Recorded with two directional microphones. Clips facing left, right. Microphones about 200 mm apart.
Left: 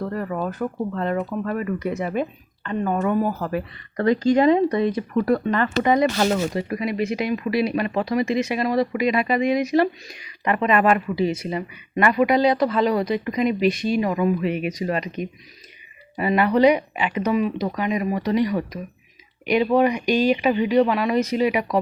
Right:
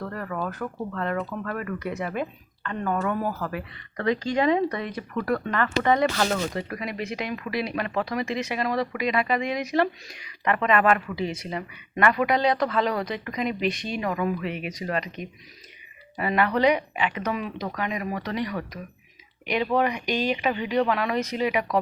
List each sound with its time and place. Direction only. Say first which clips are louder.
0.0 s speech: left 5 dB; 25° left (ahead or behind)
3.9 s speech: left 7 dB; 40° left (ahead or behind)
5.6 s speech: left 2 dB; 15° left (ahead or behind)
16.1 s speech: left 5 dB; 15° left (ahead or behind)
20.4 s speech: left 6 dB; 25° left (ahead or behind)
20.8 s speech: left 4 dB; 10° left (ahead or behind)